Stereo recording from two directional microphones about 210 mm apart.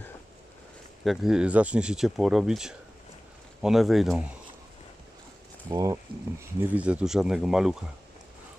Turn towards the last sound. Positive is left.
turn(degrees=0)  # may be behind; listen again after turning